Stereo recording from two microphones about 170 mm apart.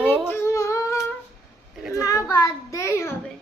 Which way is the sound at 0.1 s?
15° left (ahead or behind).